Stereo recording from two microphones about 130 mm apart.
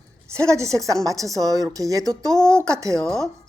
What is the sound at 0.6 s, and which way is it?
A woman's voice, 25° right (ahead or behind).